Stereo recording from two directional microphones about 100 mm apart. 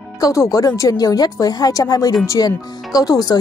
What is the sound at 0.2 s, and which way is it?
Speech, 35° left (ahead or behind).